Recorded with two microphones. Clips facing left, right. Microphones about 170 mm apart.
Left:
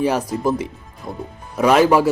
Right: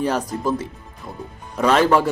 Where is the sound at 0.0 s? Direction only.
10° left (ahead or behind).